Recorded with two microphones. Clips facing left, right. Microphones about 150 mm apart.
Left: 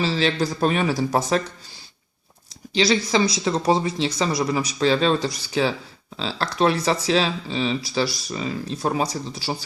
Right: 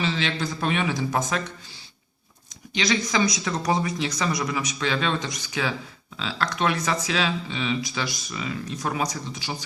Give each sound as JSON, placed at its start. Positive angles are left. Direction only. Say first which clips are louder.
{"t": 0.0, "sound": "speech", "louder": "left 5 dB", "side_deg": 35}
{"t": 2.7, "sound": "speech", "louder": "left 4 dB", "side_deg": 30}